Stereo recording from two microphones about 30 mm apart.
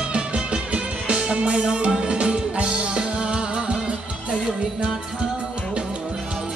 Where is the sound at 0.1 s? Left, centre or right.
Right.